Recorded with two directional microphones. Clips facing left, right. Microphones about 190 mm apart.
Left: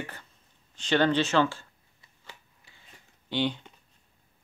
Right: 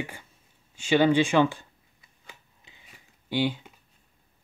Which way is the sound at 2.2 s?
15° right (ahead or behind).